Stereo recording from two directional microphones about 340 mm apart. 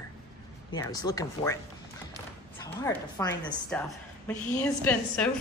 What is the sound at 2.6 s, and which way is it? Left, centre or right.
A woman's voice, centre.